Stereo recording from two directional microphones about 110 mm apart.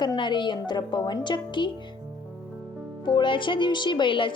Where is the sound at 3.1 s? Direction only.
45° left (ahead or behind).